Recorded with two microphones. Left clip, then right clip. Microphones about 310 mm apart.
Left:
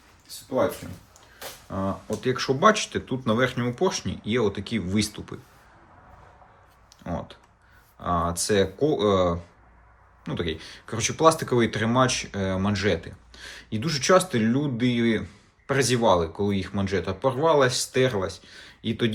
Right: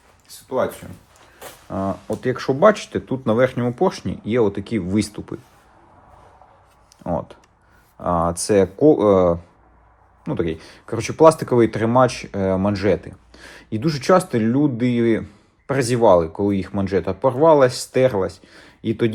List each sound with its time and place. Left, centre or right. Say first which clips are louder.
2.2 s speech: right 5 dB; centre
7.0 s a sound: right 9 dB; centre
7.9 s speech: right 5 dB; centre